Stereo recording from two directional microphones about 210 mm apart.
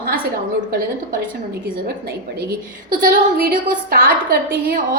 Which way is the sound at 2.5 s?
40° right (ahead or behind).